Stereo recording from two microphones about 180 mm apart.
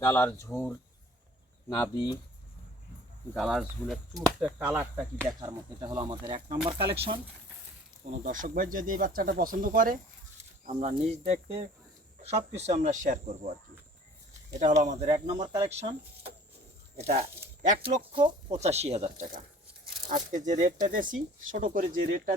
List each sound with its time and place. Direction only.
0.0 s speech: 15° left (ahead or behind)
3.3 s speech: 5° right (ahead or behind); by 7.2 s 30° right (ahead or behind)
8.1 s speech: 45° right (ahead or behind)
10.7 s speech: 35° right (ahead or behind)
14.6 s speech: 40° right (ahead or behind)
15.1 s speech: 20° right (ahead or behind)
17.8 s speech: 30° right (ahead or behind); by 21.8 s 45° right (ahead or behind)